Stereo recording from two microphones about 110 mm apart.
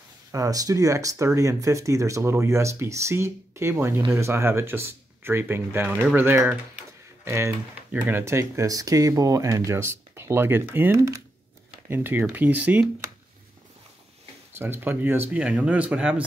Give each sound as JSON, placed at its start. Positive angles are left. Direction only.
{"t": 0.3, "sound": "speech", "side_deg": -30}
{"t": 11.0, "sound": "speech", "side_deg": -30}
{"t": 11.9, "sound": "speech", "side_deg": -20}
{"t": 14.6, "sound": "speech", "side_deg": -20}